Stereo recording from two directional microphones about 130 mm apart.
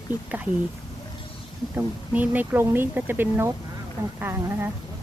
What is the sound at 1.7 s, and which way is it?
Speech, 15° right (ahead or behind).